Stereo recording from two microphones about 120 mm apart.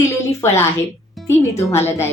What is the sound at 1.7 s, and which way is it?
Speech, 20° left (ahead or behind).